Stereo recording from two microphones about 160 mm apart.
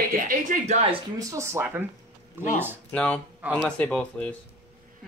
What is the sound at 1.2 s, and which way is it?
Speech, 20° right (ahead or behind).